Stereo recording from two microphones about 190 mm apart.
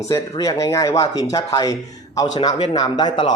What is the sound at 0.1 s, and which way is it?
Speech, 15° left (ahead or behind).